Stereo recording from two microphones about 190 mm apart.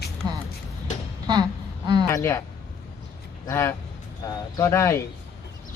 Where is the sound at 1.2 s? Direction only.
20° right (ahead or behind).